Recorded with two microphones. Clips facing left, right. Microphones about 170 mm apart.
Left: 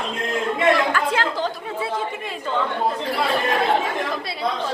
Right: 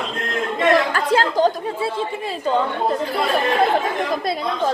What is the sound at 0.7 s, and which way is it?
Chatter, 35° right (ahead or behind).